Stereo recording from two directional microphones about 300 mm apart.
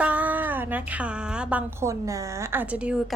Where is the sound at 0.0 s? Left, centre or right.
Centre.